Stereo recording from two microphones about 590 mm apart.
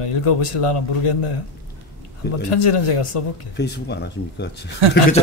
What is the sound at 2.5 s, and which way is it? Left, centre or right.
A man's voice, left.